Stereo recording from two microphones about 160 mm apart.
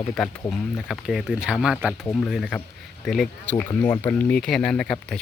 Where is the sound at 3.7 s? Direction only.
20° left (ahead or behind).